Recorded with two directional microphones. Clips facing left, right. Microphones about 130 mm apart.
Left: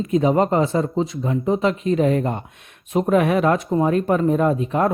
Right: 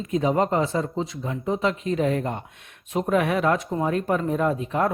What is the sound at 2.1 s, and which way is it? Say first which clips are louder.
Speech: left 5 dB; 35° left (ahead or behind).